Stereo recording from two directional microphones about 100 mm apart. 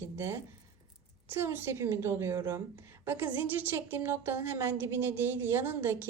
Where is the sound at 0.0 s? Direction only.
25° right (ahead or behind).